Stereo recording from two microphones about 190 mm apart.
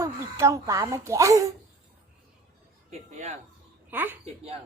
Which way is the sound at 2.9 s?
35° right (ahead or behind).